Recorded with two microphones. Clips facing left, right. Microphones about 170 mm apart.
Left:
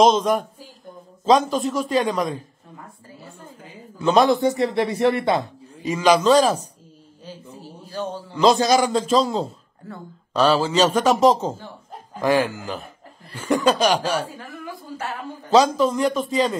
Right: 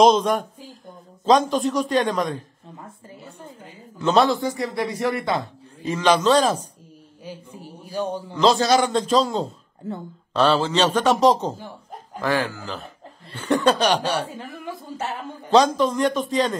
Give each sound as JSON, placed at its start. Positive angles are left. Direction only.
{"t": 0.0, "sound": "a man's voice", "side_deg": 0}
{"t": 4.0, "sound": "a man's voice", "side_deg": 10}
{"t": 4.4, "sound": "a man's voice", "side_deg": 25}
{"t": 7.2, "sound": "a sound", "side_deg": -15}
{"t": 8.4, "sound": "a man's voice", "side_deg": 15}
{"t": 9.8, "sound": "speech", "side_deg": -25}
{"t": 10.3, "sound": "a man's voice", "side_deg": 5}
{"t": 11.5, "sound": "chuckle", "side_deg": -15}
{"t": 12.2, "sound": "a man's voice", "side_deg": 15}
{"t": 13.3, "sound": "a man's voice", "side_deg": 5}
{"t": 14.2, "sound": "speech", "side_deg": -25}
{"t": 15.5, "sound": "a man's voice", "side_deg": 5}